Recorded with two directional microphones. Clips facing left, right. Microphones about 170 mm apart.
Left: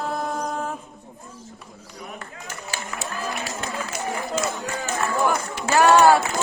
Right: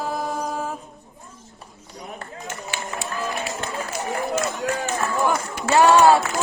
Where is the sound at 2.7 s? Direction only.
40° left (ahead or behind).